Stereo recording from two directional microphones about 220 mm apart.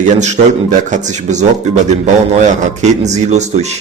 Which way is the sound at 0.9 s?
35° right (ahead or behind).